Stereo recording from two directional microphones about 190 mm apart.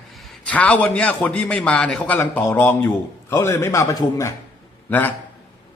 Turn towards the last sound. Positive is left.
turn(degrees=10)  # may be behind; listen again after turning